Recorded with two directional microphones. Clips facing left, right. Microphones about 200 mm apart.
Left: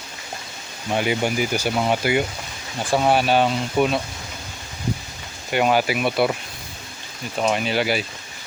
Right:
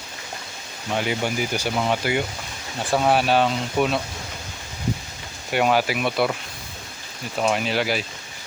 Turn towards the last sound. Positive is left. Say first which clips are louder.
# left 1 dB
turn(degrees=0)  # may be behind; listen again after turning